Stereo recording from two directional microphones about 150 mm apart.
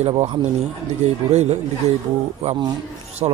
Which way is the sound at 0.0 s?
45° right (ahead or behind).